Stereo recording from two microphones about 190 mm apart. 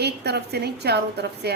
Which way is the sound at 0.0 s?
60° right (ahead or behind).